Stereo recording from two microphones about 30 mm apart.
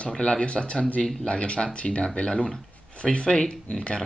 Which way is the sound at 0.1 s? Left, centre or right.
Left.